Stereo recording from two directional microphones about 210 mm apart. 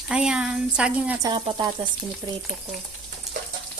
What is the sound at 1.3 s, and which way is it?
Speech, 25° right (ahead or behind).